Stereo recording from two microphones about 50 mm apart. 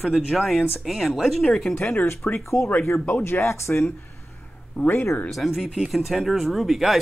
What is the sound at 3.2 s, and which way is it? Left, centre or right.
Speech, left.